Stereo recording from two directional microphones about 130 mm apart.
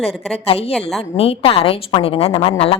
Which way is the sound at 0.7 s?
5° left (ahead or behind).